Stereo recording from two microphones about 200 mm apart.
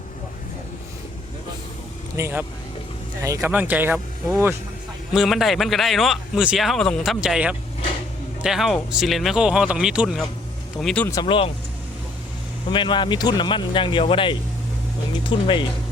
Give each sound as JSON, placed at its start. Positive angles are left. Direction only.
{"t": 2.1, "sound": "speech", "side_deg": -15}
{"t": 5.1, "sound": "speech", "side_deg": 0}
{"t": 11.1, "sound": "speech", "side_deg": 25}
{"t": 12.7, "sound": "speech", "side_deg": 25}